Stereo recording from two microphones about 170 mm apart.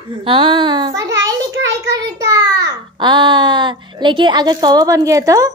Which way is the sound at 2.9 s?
25° right (ahead or behind).